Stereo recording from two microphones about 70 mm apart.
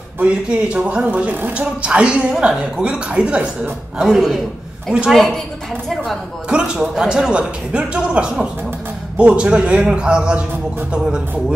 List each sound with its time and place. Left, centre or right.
0.2 s a man's voice: centre
4.0 s a man's voice: centre
6.5 s a man's voice: centre